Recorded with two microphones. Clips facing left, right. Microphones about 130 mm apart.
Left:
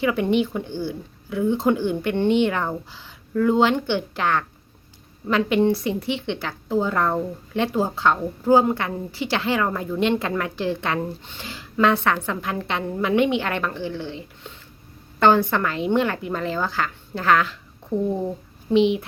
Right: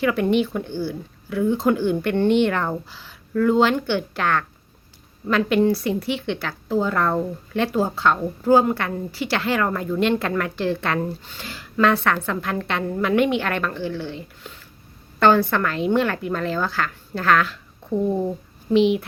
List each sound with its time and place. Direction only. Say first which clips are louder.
0.0 s a woman's voice: right 1 dB; 20° left (ahead or behind)
17.9 s speech: right 1 dB; 15° right (ahead or behind)
18.7 s speech: right 1 dB; 20° left (ahead or behind)